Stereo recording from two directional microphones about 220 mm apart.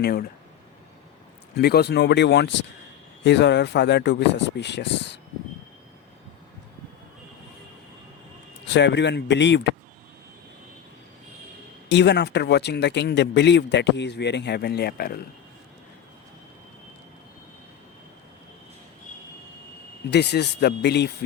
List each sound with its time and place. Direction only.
0.0 s speech: 45° left (ahead or behind)
1.5 s speech: 45° left (ahead or behind)
8.7 s speech: 50° left (ahead or behind)
11.9 s speech: 50° left (ahead or behind)
20.1 s speech: 50° left (ahead or behind)